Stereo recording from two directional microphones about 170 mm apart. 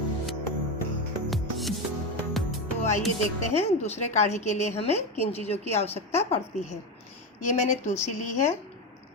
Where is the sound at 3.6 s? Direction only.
40° left (ahead or behind).